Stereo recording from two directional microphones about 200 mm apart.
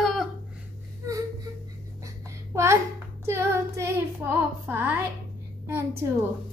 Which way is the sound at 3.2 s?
15° right (ahead or behind).